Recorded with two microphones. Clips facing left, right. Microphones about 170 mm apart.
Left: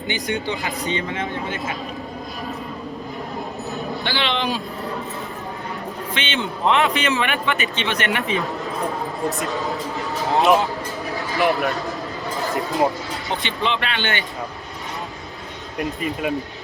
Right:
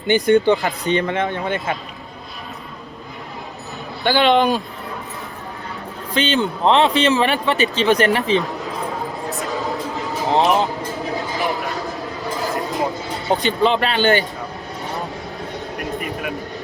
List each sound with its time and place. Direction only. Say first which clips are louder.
0.3 s speech: right 11 dB; 55° right (ahead or behind)
4.0 s a man's voice: right 11 dB; 45° right (ahead or behind)
6.1 s a man's voice: right 9 dB; 35° right (ahead or behind)
9.5 s speech: right 1 dB; centre (ahead or behind)
10.2 s speech: even; 20° right (ahead or behind)
11.1 s a sound: left 4 dB; 20° right (ahead or behind)
13.2 s a man's voice: right 8 dB; 40° right (ahead or behind)